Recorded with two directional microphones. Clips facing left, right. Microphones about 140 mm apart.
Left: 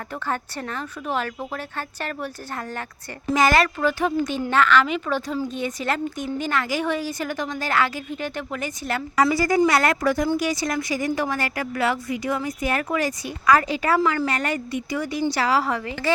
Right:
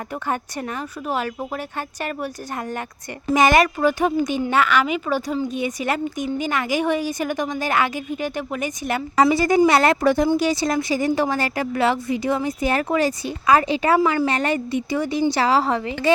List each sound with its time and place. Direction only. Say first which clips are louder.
0.3 s a woman's voice: right 2 dB; 10° right (ahead or behind)
3.3 s a woman's voice: right 3 dB; 20° right (ahead or behind)